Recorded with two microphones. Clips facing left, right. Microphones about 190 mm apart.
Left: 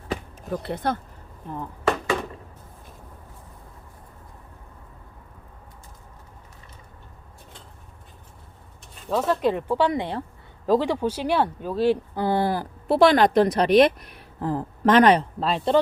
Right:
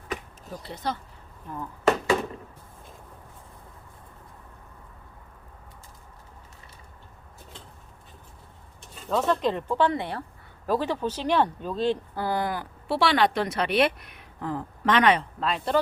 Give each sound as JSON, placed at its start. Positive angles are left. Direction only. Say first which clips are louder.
{"t": 0.5, "sound": "speech", "louder": "left 6 dB", "side_deg": 60}
{"t": 9.0, "sound": "speech", "louder": "left 2 dB", "side_deg": 5}
{"t": 12.2, "sound": "speech", "louder": "left 5 dB", "side_deg": 30}